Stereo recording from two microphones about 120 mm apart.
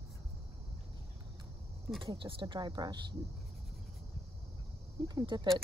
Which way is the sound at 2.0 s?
45° right (ahead or behind).